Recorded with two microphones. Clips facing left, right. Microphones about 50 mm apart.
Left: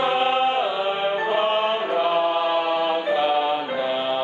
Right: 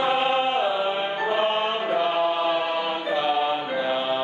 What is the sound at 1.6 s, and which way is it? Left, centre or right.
Chant, centre.